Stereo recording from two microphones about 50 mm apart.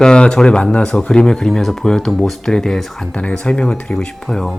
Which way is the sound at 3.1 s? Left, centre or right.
Left.